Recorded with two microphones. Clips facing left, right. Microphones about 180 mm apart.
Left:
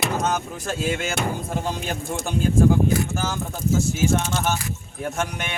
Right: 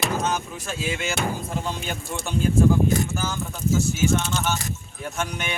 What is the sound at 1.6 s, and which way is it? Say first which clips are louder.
Speech: left 3 dB; 40° left (ahead or behind).